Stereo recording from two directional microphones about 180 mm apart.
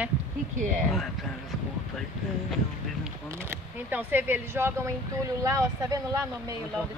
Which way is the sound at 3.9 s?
10° right (ahead or behind).